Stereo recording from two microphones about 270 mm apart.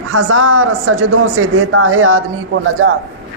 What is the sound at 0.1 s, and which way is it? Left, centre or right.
A man's voice, right.